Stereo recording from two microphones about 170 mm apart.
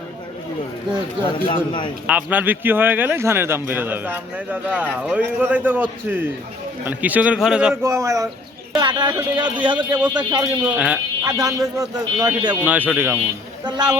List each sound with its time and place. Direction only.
1.5 s a man's voice: 30° left (ahead or behind)
2.0 s speech: 10° right (ahead or behind)
7.9 s speech: 15° right (ahead or behind)
10.6 s speech: 5° right (ahead or behind)
11.2 s speech: 20° right (ahead or behind)
12.6 s speech: 10° right (ahead or behind)
13.7 s speech: 25° right (ahead or behind)